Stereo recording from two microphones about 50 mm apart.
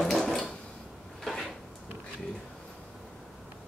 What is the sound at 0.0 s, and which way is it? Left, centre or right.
Drawer open or close, centre.